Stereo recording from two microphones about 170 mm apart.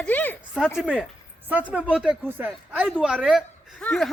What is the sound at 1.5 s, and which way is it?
A man's voice, 10° right (ahead or behind).